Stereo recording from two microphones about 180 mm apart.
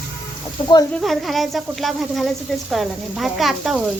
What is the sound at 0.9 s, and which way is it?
Speech, centre (ahead or behind).